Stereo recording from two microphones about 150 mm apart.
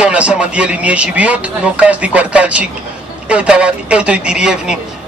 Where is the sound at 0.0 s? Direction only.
10° right (ahead or behind).